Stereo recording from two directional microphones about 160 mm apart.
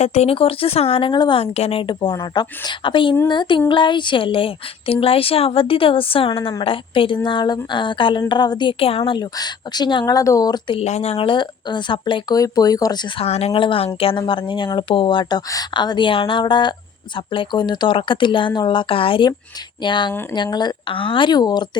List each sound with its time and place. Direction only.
0.0 s a woman's voice: 45° left (ahead or behind); by 10.8 s 25° left (ahead or behind)
10.8 s speech: 40° left (ahead or behind); by 13.2 s 25° left (ahead or behind)
13.2 s a woman's voice: 40° left (ahead or behind)